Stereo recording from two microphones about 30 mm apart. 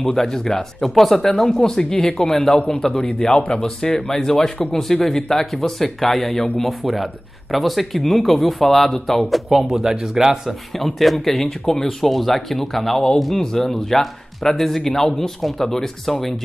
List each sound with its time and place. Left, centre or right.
0.1 s speech: centre
2.3 s speech: centre
3.3 s speech: left
4.1 s speech: centre
9.5 s speech: centre
10.8 s speech: centre
12.0 s speech: centre